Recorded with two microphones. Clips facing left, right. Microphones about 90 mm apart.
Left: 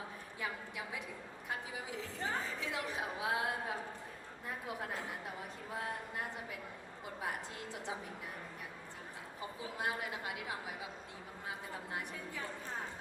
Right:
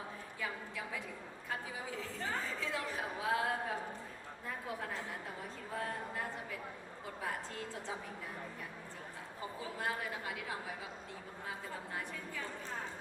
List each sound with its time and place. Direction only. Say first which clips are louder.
0.3 s a sound: even; 20° left (ahead or behind)
1.5 s chatter: right 1 dB; 20° left (ahead or behind)
4.4 s a woman's voice: even; 20° left (ahead or behind)
9.7 s a woman's voice: left 1 dB; 20° left (ahead or behind)
11.4 s a woman's voice: even; 20° left (ahead or behind)